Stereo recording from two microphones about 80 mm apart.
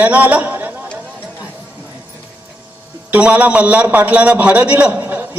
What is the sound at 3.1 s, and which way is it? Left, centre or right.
A man's voice, centre.